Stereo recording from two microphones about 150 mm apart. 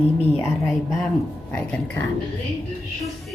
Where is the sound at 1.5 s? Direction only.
10° left (ahead or behind).